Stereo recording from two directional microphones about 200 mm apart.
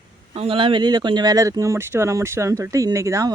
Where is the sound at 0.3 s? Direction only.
25° right (ahead or behind).